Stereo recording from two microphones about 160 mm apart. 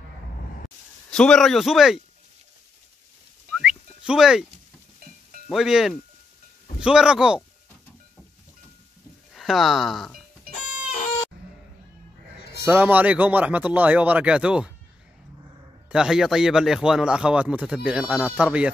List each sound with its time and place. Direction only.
1.1 s a man's voice: 5° left (ahead or behind)
3.5 s a sound: 5° right (ahead or behind)
5.5 s a man's voice: centre (ahead or behind)
9.3 s speech: centre (ahead or behind)
10.5 s music: 55° left (ahead or behind)
12.6 s speech: 10° right (ahead or behind)
15.9 s a man's voice: 5° right (ahead or behind)